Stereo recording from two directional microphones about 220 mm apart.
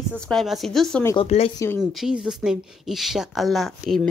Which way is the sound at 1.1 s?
30° left (ahead or behind).